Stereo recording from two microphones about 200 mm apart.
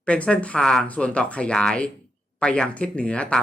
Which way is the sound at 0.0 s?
5° left (ahead or behind).